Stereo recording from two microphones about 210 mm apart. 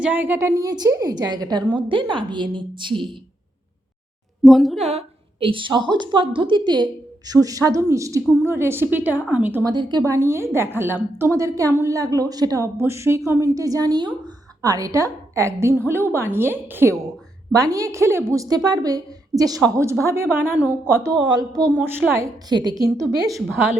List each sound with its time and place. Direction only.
0.0 s a woman's voice: 10° right (ahead or behind)
4.4 s speech: centre (ahead or behind)
4.8 s a woman's voice: 30° right (ahead or behind)